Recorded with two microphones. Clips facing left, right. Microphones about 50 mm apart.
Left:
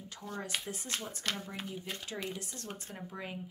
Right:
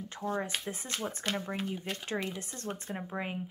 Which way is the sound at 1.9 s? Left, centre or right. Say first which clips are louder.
Right 4 dB; right.